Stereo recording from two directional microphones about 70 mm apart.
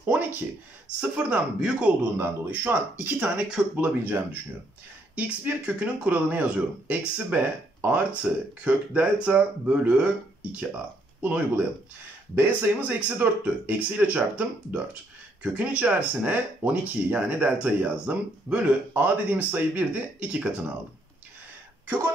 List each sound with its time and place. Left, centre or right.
0.0 s speech: right
2.1 s speech: right
5.1 s speech: right
21.8 s speech: right